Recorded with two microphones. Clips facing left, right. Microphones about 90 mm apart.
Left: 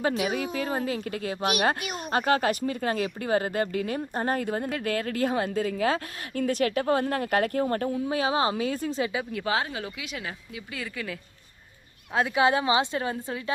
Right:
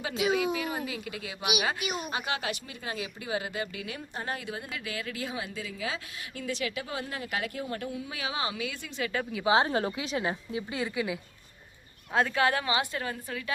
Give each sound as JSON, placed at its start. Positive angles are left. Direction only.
{"t": 0.1, "sound": "speech", "side_deg": -20}
{"t": 0.6, "sound": "speech", "side_deg": 40}
{"t": 1.4, "sound": "speech", "side_deg": -10}
{"t": 2.0, "sound": "speech", "side_deg": 45}
{"t": 9.5, "sound": "speech", "side_deg": -30}
{"t": 12.3, "sound": "a woman's voice", "side_deg": 20}